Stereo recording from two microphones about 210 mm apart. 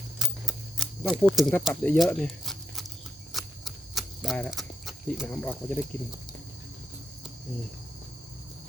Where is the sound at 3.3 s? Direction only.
Centre (ahead or behind).